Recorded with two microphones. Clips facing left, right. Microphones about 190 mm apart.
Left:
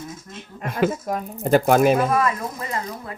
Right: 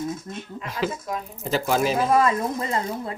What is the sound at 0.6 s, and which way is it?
Speech, 50° left (ahead or behind).